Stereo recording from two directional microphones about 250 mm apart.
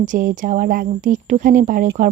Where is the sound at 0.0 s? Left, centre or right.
Right.